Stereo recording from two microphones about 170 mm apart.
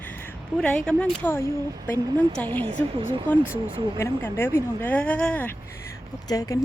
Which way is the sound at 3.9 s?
15° left (ahead or behind).